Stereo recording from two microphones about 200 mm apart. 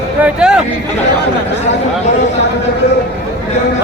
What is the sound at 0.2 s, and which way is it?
Speech, 5° right (ahead or behind).